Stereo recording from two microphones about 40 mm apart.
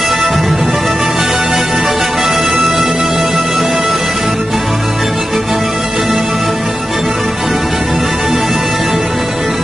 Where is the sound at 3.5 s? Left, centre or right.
Centre.